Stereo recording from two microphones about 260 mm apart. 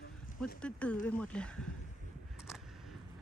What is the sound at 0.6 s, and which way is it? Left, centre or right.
Speech, centre.